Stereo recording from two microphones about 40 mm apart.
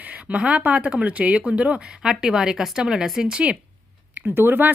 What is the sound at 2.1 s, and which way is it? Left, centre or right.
Speech, centre.